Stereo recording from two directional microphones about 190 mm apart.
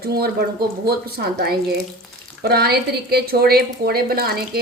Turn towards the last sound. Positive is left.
turn(degrees=-55)  # may be behind; listen again after turning